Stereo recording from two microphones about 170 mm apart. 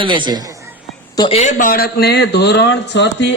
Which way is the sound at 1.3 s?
45° left (ahead or behind).